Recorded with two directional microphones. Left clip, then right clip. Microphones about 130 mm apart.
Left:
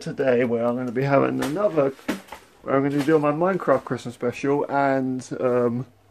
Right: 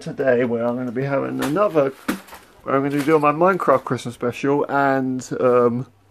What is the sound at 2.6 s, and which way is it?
Speech, 10° right (ahead or behind).